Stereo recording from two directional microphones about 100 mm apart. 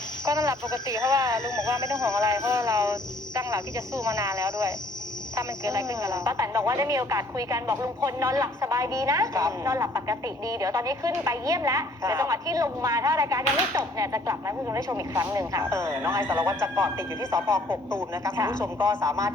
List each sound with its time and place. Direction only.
0.3 s speech: 30° right (ahead or behind)
1.4 s speech: 45° left (ahead or behind)
2.0 s a woman's voice: 30° right (ahead or behind)